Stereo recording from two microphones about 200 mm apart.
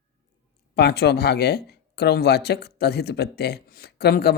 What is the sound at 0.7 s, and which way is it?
Speech, 55° left (ahead or behind).